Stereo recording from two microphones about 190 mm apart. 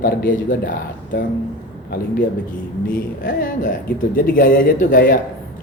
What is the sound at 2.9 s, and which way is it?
Speech, 45° left (ahead or behind).